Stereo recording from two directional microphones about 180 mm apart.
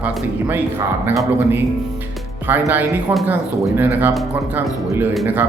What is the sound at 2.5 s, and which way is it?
Speech, 10° right (ahead or behind).